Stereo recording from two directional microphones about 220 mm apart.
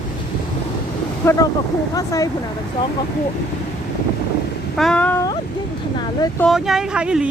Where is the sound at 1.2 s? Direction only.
15° left (ahead or behind).